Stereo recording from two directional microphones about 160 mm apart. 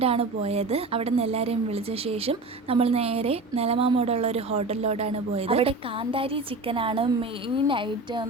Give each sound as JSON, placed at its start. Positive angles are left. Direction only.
{"t": 0.0, "sound": "speech", "side_deg": -40}